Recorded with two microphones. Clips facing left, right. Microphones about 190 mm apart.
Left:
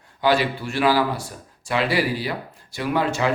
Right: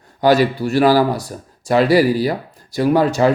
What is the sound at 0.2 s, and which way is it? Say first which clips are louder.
Speech: right 7 dB; 40° right (ahead or behind).